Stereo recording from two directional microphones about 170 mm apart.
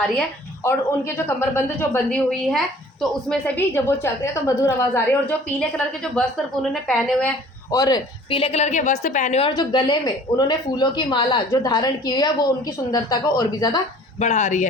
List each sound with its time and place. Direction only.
0.6 s a woman's voice: 15° left (ahead or behind)
5.5 s a woman's voice: 5° left (ahead or behind)
7.7 s a woman's voice: 20° left (ahead or behind); by 9.5 s 45° left (ahead or behind)
9.6 s speech: 30° left (ahead or behind)
14.2 s speech: 40° left (ahead or behind)